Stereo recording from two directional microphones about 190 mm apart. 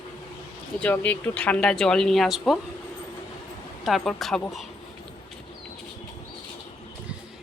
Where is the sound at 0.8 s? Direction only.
10° left (ahead or behind).